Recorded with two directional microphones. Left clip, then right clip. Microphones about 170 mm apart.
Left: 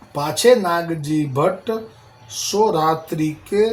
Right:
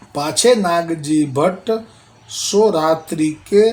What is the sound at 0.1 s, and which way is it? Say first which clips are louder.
Speech: even; 25° right (ahead or behind).